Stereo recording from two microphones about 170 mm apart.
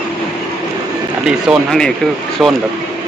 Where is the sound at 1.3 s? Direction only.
5° right (ahead or behind).